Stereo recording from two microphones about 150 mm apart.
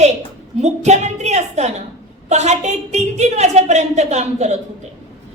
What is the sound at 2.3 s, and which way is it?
A woman's voice, 50° right (ahead or behind).